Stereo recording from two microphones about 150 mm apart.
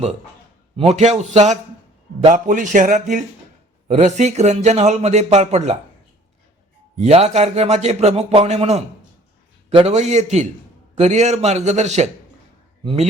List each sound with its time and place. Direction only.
0.8 s a man's voice: 45° right (ahead or behind)
7.0 s a man's voice: 45° right (ahead or behind)
12.8 s speech: 35° right (ahead or behind)